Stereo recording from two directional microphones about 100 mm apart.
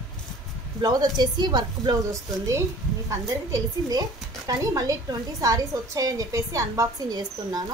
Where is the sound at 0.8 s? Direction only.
40° right (ahead or behind).